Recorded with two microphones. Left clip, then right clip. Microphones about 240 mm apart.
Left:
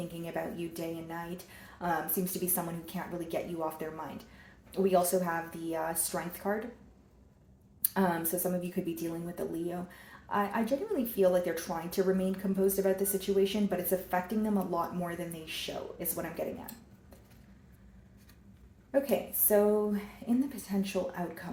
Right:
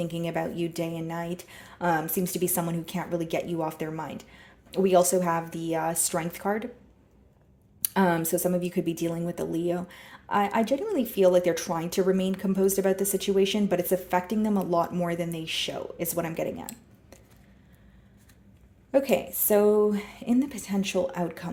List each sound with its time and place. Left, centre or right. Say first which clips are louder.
0.0 s speech: right 7 dB; right
7.8 s speech: right 6 dB; right
18.9 s speech: right 6 dB; right